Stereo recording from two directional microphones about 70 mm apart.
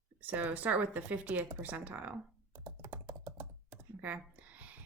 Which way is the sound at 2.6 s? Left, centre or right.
Right.